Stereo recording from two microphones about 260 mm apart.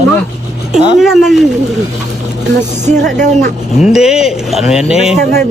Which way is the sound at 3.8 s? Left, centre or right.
Centre.